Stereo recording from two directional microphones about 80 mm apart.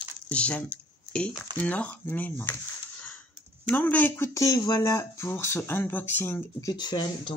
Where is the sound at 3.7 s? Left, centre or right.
Left.